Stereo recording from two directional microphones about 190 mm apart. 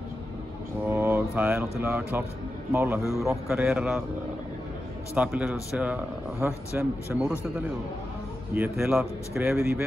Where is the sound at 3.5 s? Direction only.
5° right (ahead or behind).